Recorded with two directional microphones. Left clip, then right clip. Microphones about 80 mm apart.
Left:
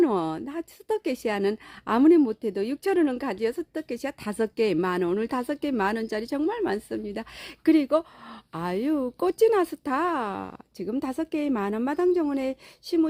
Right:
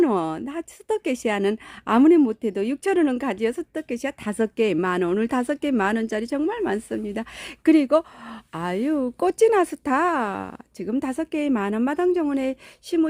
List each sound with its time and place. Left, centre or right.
0.0 s speech: right
6.7 s speech: right
8.5 s speech: right
9.2 s speech: right